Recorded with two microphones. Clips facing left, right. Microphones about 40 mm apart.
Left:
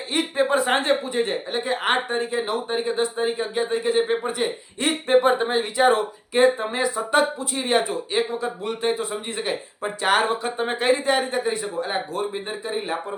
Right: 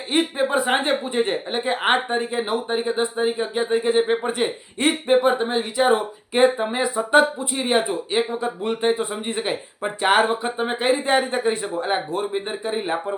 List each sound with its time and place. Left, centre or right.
0.3 s speech: centre
0.8 s speech: right
4.3 s speech: right
5.0 s speech: centre
5.9 s speech: right
7.5 s speech: centre
11.0 s speech: right